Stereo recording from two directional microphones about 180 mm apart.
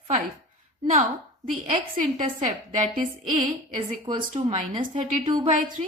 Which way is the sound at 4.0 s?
25° right (ahead or behind).